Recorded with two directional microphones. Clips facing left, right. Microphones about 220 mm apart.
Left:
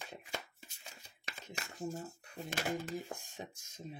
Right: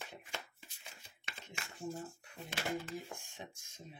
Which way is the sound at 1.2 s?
40° left (ahead or behind).